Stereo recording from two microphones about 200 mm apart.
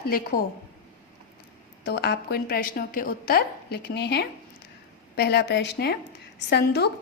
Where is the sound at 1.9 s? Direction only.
55° left (ahead or behind).